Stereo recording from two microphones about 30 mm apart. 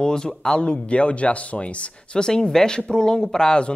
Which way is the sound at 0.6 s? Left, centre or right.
Left.